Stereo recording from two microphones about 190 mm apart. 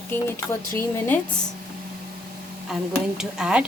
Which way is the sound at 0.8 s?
10° left (ahead or behind).